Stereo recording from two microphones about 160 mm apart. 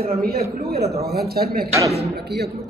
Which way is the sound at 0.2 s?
75° right (ahead or behind).